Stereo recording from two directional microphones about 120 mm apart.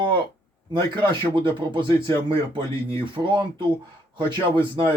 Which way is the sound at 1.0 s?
45° right (ahead or behind).